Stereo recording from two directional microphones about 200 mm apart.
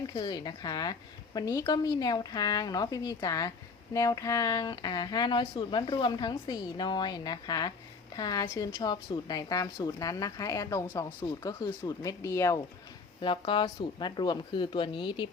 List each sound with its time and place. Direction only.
0.1 s speech: 20° left (ahead or behind)
13.2 s speech: 25° left (ahead or behind)